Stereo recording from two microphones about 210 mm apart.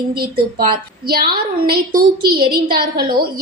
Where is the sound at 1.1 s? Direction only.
45° right (ahead or behind).